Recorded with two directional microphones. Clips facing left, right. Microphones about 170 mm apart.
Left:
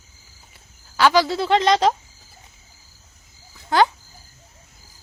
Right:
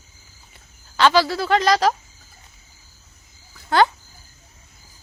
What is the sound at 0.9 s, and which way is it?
Speech, 15° left (ahead or behind).